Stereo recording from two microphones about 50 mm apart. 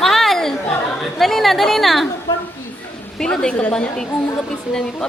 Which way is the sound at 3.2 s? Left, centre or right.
Centre.